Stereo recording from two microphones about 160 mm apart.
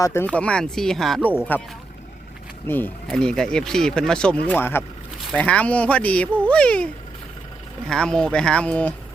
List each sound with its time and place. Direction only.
0.0 s speech: 15° left (ahead or behind)
2.6 s speech: 15° left (ahead or behind)